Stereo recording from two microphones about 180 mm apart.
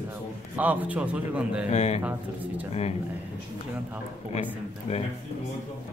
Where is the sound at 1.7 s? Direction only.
35° left (ahead or behind).